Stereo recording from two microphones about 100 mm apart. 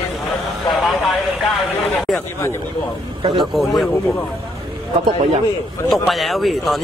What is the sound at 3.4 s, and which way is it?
Speech, centre (ahead or behind).